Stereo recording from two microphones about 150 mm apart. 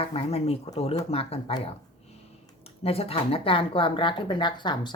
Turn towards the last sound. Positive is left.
turn(degrees=30)  # may be behind; listen again after turning